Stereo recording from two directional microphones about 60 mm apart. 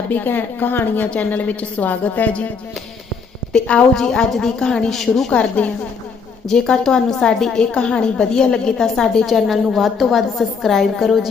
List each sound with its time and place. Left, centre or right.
0.1 s a woman's voice: left
3.5 s a woman's voice: centre
5.3 s a woman's voice: left
6.5 s a woman's voice: centre